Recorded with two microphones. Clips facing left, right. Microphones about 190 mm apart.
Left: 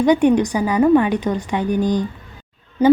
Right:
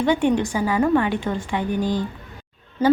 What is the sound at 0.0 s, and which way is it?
A woman's voice, 20° left (ahead or behind).